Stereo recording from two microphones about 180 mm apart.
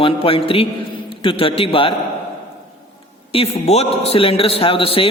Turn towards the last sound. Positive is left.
turn(degrees=30)  # may be behind; listen again after turning